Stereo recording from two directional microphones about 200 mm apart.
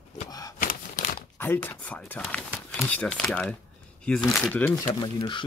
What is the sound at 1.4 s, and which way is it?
Speech, 10° left (ahead or behind).